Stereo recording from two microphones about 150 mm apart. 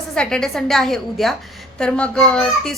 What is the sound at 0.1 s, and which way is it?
A woman's voice, 5° left (ahead or behind).